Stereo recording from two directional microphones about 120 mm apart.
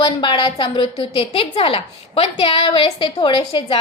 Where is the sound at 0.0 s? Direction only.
40° left (ahead or behind).